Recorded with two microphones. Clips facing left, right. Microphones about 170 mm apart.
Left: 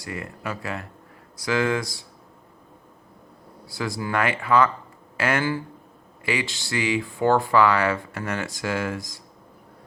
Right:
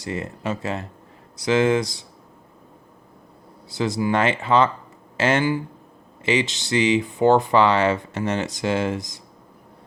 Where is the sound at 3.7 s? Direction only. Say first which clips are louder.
Right 5 dB; 20° right (ahead or behind).